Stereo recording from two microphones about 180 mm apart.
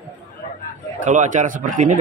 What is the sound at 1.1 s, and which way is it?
Speech, 45° right (ahead or behind).